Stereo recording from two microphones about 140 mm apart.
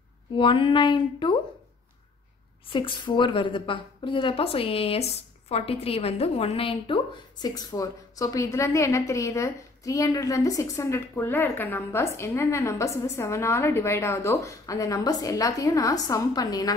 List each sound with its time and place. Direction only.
0.4 s a woman's voice: 40° left (ahead or behind)
2.7 s a woman's voice: 35° left (ahead or behind)
7.4 s a woman's voice: 25° left (ahead or behind)